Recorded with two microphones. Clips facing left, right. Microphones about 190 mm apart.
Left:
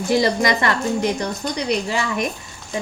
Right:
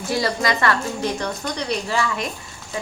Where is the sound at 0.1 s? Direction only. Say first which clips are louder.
Left 4 dB; 15° left (ahead or behind).